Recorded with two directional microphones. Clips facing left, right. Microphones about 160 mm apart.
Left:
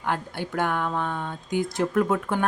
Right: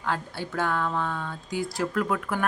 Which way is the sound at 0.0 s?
15° left (ahead or behind).